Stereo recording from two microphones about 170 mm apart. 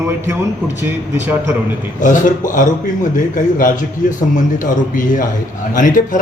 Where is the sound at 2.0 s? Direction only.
50° left (ahead or behind).